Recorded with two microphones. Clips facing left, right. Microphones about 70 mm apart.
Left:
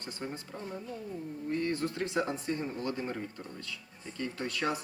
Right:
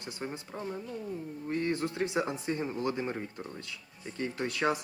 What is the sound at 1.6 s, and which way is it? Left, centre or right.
Speech, right.